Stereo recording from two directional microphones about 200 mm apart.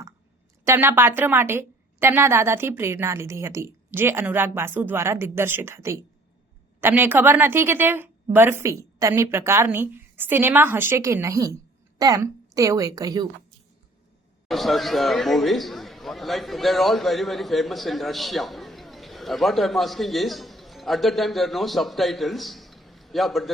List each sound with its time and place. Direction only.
0.6 s a woman's voice: 10° right (ahead or behind)
14.4 s speech: centre (ahead or behind)